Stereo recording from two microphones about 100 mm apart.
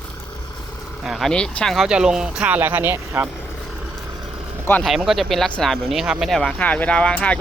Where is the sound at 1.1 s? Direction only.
Centre (ahead or behind).